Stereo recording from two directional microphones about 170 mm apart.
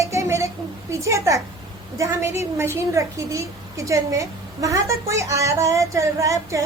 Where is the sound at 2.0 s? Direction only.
15° right (ahead or behind).